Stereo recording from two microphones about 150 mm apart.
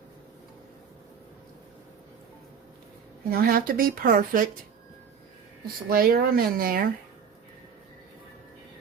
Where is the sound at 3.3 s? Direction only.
80° right.